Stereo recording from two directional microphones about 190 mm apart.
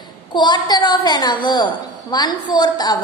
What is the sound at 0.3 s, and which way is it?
A woman's voice, 25° left (ahead or behind).